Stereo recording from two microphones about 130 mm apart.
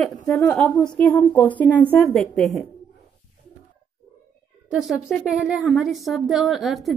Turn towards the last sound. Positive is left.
turn(degrees=0)  # may be behind; listen again after turning